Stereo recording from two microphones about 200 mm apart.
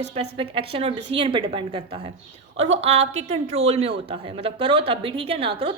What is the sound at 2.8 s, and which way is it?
Speech, 30° right (ahead or behind).